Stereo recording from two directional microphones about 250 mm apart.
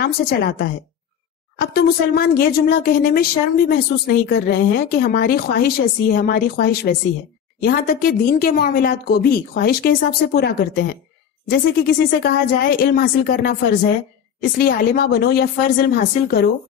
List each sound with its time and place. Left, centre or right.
0.0 s a woman's voice: left